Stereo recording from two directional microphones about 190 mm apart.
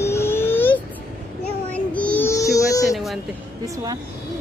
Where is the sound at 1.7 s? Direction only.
5° left (ahead or behind).